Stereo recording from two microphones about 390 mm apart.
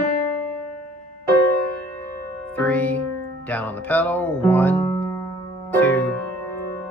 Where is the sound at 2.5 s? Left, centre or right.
Centre.